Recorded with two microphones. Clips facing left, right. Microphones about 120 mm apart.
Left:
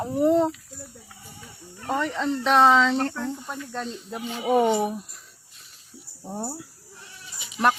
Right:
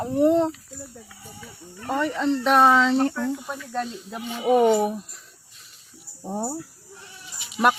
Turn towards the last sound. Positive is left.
turn(degrees=-5)  # may be behind; listen again after turning